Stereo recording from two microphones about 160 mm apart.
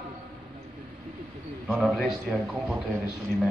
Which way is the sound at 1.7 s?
Centre (ahead or behind).